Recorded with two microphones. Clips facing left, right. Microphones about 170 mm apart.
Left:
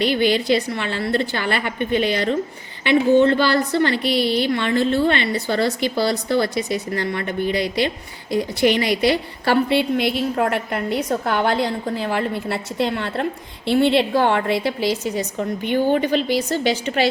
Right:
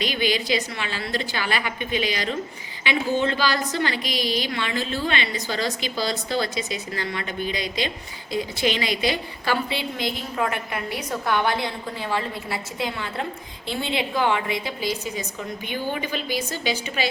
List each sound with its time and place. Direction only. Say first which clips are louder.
0.0 s a woman's voice: left 6 dB; 60° left (ahead or behind)